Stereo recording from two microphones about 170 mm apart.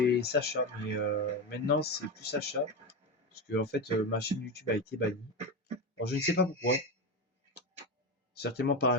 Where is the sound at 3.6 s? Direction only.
70° left (ahead or behind).